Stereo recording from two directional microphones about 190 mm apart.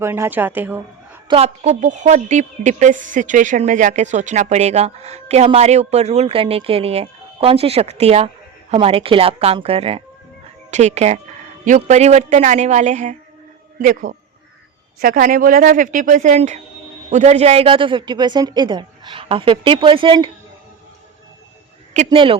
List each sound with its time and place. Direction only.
0.0 s a woman's voice: 10° right (ahead or behind)
1.3 s a woman's voice: 35° right (ahead or behind)
21.9 s a woman's voice: 30° right (ahead or behind)